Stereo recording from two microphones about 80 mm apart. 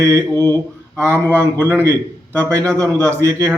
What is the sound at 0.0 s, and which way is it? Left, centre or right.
A man's voice, right.